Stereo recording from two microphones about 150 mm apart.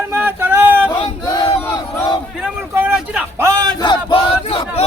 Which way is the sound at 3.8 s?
35° left (ahead or behind).